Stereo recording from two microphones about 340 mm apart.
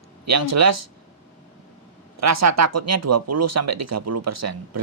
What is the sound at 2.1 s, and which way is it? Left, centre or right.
Speech, right.